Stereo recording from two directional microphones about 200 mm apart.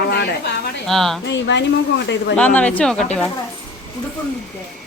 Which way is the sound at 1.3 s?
65° left (ahead or behind).